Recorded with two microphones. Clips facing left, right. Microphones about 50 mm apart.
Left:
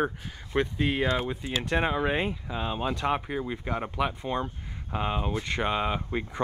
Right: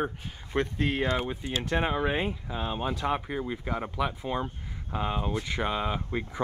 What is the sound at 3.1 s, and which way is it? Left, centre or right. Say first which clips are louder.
Speech: left 1 dB; centre.